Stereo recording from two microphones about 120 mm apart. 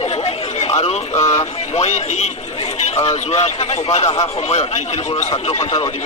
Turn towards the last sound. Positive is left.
turn(degrees=60)  # may be behind; listen again after turning